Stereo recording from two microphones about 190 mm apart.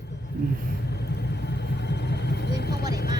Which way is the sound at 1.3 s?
60° left (ahead or behind).